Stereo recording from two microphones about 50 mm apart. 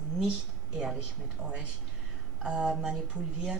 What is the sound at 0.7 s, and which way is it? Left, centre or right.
Speech, centre.